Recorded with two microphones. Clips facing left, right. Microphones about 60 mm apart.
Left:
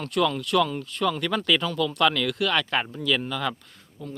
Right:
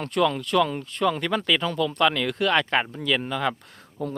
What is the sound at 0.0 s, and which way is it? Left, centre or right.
Speech, right.